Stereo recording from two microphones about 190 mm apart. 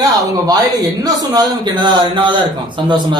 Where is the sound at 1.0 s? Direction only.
20° right (ahead or behind).